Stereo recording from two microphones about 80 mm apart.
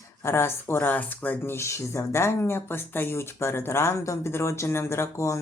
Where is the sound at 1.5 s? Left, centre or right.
Left.